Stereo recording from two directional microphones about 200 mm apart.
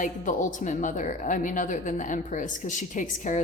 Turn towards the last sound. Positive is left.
turn(degrees=40)  # may be behind; listen again after turning